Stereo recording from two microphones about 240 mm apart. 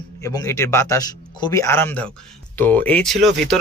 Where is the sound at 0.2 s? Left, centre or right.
Centre.